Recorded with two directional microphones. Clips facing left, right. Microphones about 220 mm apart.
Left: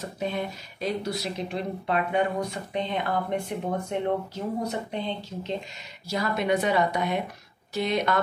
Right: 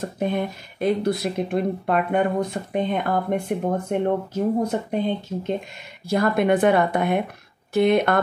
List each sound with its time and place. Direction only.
0.0 s speech: 50° right (ahead or behind)